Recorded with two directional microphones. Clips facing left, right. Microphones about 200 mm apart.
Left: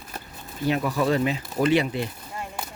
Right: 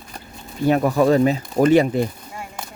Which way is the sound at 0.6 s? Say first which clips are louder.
Right 7 dB; 45° right (ahead or behind).